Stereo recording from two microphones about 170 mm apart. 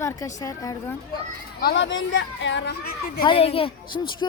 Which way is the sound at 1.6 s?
80° left.